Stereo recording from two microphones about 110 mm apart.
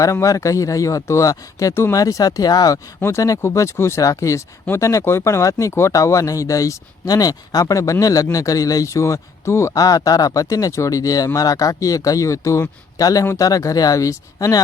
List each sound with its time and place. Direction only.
0.0 s speech: 30° left (ahead or behind)